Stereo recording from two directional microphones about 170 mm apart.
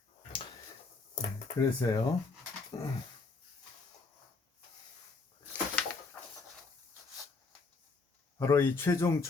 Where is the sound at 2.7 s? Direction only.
20° left (ahead or behind).